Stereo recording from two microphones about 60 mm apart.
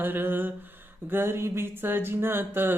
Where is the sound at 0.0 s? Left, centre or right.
Right.